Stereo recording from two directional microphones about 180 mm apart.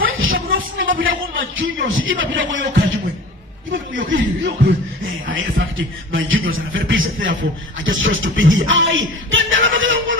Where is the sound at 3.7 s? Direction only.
90° right.